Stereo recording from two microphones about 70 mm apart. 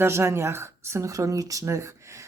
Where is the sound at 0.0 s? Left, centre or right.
Right.